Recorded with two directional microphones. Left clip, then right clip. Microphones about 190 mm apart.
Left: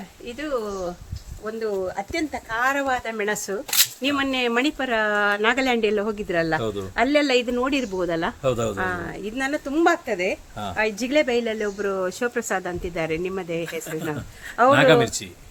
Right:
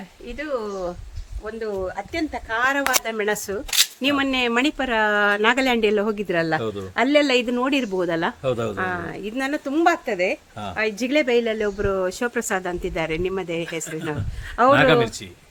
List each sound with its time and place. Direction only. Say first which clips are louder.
0.3 s speech: even; centre (ahead or behind)
1.5 s speech: left 1 dB; 20° right (ahead or behind); by 6.6 s 55° right (ahead or behind)
6.6 s speech: even; 5° left (ahead or behind)
6.9 s speech: right 2 dB; 55° right (ahead or behind)
8.4 s speech: left 3 dB; 5° left (ahead or behind)
8.7 s speech: right 1 dB; 55° right (ahead or behind)
14.7 s speech: even; centre (ahead or behind)